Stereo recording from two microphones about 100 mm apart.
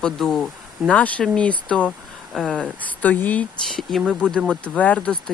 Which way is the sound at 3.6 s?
Centre (ahead or behind).